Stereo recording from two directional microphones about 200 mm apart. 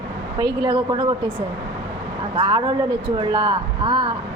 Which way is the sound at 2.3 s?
25° right (ahead or behind).